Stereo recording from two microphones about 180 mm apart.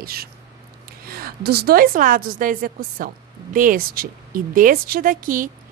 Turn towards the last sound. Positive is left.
turn(degrees=-50)  # may be behind; listen again after turning